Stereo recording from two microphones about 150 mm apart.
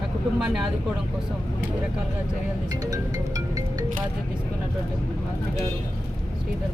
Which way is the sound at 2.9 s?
25° right (ahead or behind).